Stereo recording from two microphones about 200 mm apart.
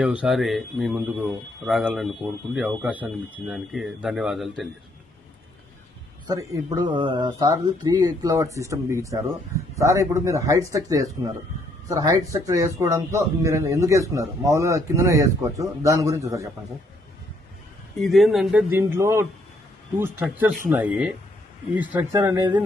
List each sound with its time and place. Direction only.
0.0 s a man's voice: 5° right (ahead or behind)
6.2 s a man's voice: 20° right (ahead or behind)
18.0 s a man's voice: centre (ahead or behind)